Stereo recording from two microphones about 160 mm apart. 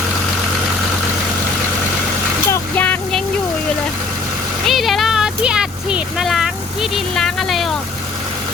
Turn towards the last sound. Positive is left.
turn(degrees=0)  # may be behind; listen again after turning